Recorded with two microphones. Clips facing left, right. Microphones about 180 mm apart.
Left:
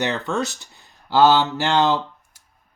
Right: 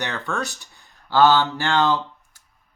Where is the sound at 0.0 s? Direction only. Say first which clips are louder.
Left 4 dB; 20° left (ahead or behind).